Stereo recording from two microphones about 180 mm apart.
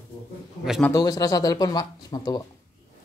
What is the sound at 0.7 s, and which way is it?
Speech, 5° left (ahead or behind).